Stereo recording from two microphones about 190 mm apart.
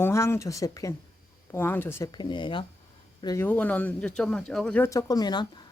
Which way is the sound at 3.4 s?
10° left (ahead or behind).